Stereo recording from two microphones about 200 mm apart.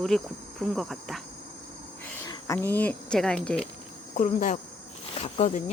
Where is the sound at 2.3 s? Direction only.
15° left (ahead or behind).